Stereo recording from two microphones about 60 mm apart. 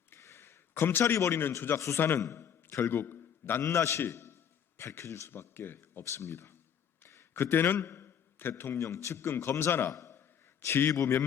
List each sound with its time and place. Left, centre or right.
0.2 s a sound: left
2.0 s speech: left
2.2 s a man's voice: left
3.6 s a man's voice: left
5.3 s speech: left
6.0 s a man's voice: left
7.0 s a sound: left
8.7 s speech: left
9.1 s speech: left
9.9 s a sound: left
10.6 s a man's voice: left
10.9 s a man's voice: left